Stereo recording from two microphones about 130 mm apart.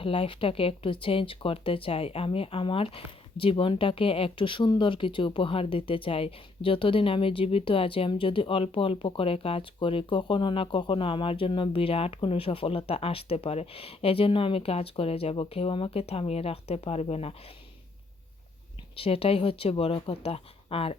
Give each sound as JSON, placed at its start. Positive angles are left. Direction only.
{"t": 0.0, "sound": "speech", "side_deg": 45}
{"t": 18.9, "sound": "speech", "side_deg": 45}